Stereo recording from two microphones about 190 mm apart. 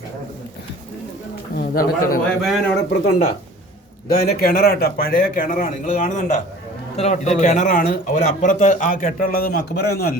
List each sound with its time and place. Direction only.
1.5 s speech: 50° left (ahead or behind)
2.4 s speech: centre (ahead or behind)
4.4 s speech: 50° left (ahead or behind)